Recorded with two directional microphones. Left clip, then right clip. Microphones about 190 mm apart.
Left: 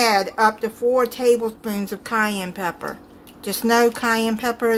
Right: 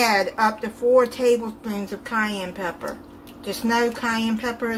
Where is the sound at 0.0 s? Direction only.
40° left (ahead or behind).